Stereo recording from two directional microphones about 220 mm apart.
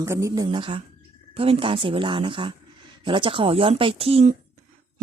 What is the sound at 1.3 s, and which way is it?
A woman's voice, 25° right (ahead or behind).